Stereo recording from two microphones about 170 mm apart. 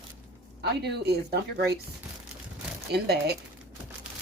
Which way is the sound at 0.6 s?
75° right (ahead or behind).